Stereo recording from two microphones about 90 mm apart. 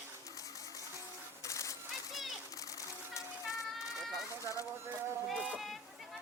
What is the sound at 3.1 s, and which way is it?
Music, 35° left (ahead or behind).